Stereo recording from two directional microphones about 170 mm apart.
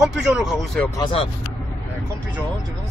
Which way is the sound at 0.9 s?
25° left (ahead or behind).